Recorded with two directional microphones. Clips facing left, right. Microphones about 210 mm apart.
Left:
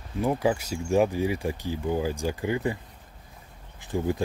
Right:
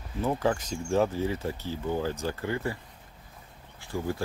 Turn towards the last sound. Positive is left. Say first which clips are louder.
# left 4 dB
turn(degrees=20)  # may be behind; listen again after turning